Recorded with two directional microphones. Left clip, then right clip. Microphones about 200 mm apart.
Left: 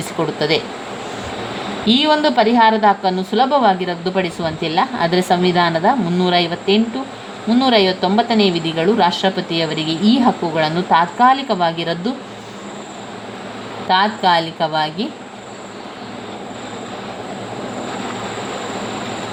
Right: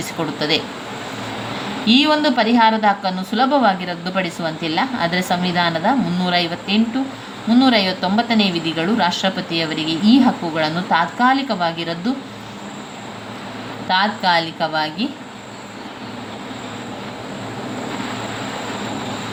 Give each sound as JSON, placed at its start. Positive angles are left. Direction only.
{"t": 0.3, "sound": "a woman's voice", "side_deg": 20}
{"t": 1.9, "sound": "a woman's voice", "side_deg": 20}
{"t": 13.8, "sound": "a woman's voice", "side_deg": 20}